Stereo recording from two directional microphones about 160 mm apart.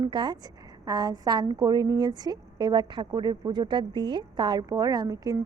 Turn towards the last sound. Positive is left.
turn(degrees=-25)  # may be behind; listen again after turning